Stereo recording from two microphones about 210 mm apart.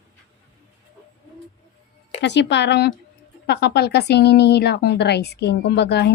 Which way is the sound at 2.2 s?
55° left (ahead or behind).